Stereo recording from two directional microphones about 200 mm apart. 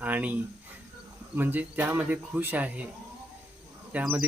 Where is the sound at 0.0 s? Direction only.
5° right (ahead or behind).